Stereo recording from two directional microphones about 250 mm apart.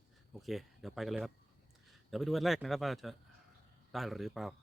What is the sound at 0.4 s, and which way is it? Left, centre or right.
A man's voice, centre.